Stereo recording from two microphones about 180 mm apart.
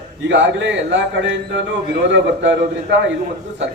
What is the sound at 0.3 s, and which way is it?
A man's voice, 80° right.